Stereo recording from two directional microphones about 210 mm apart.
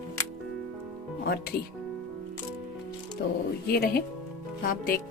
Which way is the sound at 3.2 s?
50° left (ahead or behind).